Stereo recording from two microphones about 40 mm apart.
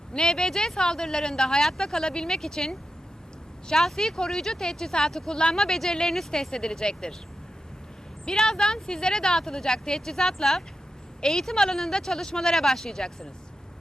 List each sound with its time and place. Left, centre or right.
0.1 s speech: centre
8.2 s speech: centre